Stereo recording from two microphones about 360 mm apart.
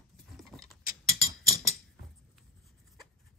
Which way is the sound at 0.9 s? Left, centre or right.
Centre.